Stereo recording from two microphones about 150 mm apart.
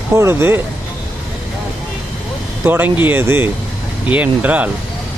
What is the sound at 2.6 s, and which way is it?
Speech, 15° right (ahead or behind).